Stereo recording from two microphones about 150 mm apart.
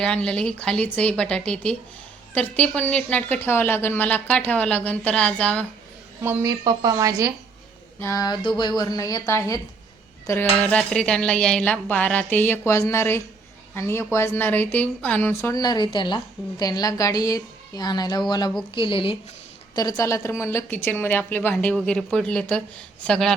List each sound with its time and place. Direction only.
0.0 s a woman's voice: 5° left (ahead or behind)
6.2 s speech: 25° right (ahead or behind)
7.9 s a woman's voice: 20° left (ahead or behind); by 19.1 s 35° left (ahead or behind)
19.7 s a woman's voice: 25° left (ahead or behind); by 23.3 s 5° left (ahead or behind)